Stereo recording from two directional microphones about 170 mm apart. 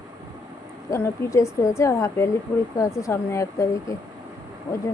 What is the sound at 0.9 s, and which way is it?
A woman's voice, 20° left (ahead or behind).